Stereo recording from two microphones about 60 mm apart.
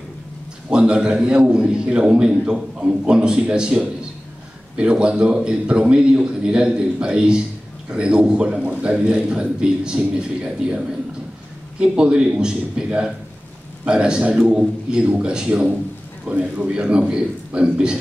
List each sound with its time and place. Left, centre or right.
0.7 s a man's voice: centre
11.8 s a man's voice: centre